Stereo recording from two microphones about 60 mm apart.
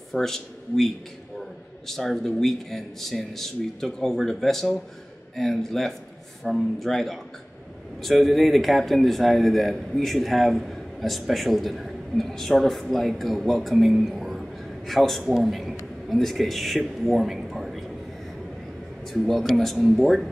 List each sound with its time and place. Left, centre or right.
0.1 s speech: centre
19.0 s speech: centre